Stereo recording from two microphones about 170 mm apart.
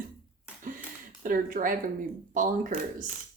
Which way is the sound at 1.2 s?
55° right (ahead or behind).